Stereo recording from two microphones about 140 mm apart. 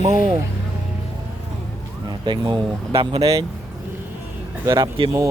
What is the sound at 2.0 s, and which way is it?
Speech, 35° right (ahead or behind).